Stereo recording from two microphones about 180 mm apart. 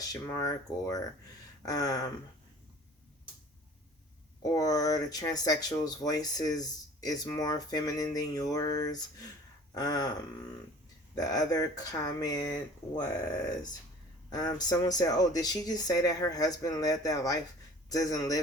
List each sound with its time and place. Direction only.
0.1 s speech: 20° left (ahead or behind)
4.5 s speech: 20° left (ahead or behind)